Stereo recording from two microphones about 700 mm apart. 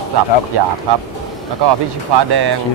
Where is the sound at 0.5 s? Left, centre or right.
Right.